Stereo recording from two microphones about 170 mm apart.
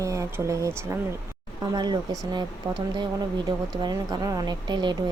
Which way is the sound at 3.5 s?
25° right (ahead or behind).